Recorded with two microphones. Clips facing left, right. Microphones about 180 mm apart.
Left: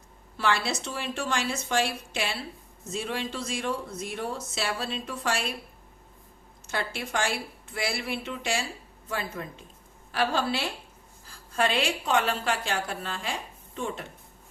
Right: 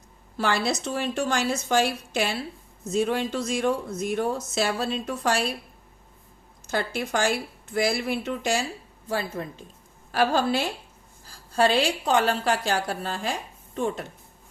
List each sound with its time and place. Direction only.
0.3 s a woman's voice: 40° right (ahead or behind)
6.7 s a woman's voice: 40° right (ahead or behind)